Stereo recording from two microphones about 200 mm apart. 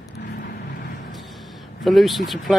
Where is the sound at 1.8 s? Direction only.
Centre (ahead or behind).